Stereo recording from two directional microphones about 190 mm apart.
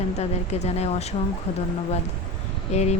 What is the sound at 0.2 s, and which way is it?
Speech, 35° left (ahead or behind).